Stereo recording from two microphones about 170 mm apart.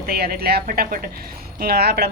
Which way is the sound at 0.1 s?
65° right (ahead or behind).